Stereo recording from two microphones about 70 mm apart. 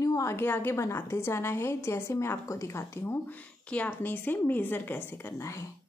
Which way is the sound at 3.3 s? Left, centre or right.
Left.